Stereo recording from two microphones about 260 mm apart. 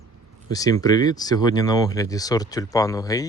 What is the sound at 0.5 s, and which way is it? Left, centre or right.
Speech, centre.